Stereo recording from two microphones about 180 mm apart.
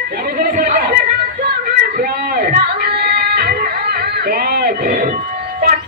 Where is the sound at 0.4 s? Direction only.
60° right (ahead or behind).